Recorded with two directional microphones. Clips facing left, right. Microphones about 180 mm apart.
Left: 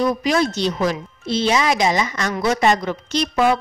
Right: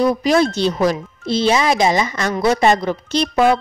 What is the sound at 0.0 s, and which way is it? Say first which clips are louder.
A woman's voice: right 4 dB; 35° right (ahead or behind).